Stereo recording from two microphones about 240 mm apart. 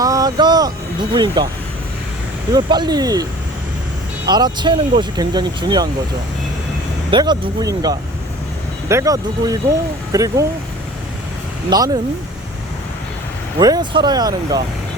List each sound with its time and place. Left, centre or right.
0.0 s vehicle: centre
1.1 s speech: centre
2.5 s speech: centre
4.3 s speech: centre
7.1 s speech: centre
11.7 s speech: centre
13.6 s speech: centre